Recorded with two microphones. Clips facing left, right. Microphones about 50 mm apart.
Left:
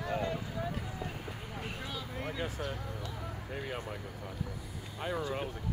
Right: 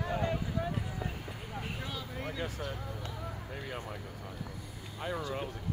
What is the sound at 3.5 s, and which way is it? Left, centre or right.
Vehicle, centre.